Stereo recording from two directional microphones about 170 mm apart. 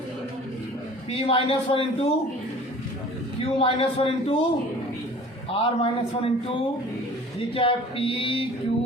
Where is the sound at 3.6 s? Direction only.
35° left (ahead or behind).